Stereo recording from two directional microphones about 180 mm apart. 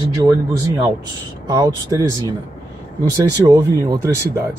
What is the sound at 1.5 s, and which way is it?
Speech, 20° right (ahead or behind).